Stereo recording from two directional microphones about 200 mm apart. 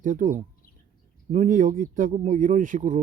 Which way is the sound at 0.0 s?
40° right (ahead or behind).